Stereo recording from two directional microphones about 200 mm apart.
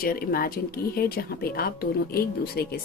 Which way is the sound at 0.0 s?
45° left (ahead or behind).